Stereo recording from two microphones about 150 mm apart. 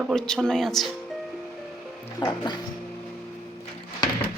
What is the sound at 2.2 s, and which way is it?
Speech, 30° left (ahead or behind).